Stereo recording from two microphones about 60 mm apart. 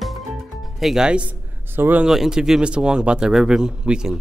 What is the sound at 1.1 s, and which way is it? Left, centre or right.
Speech, centre.